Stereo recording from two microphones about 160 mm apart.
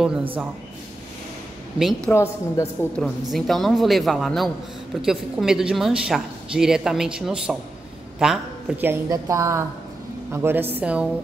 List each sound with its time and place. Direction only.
2.0 s a woman's voice: 15° left (ahead or behind)
3.0 s a woman's voice: centre (ahead or behind)
8.9 s a woman's voice: 20° right (ahead or behind)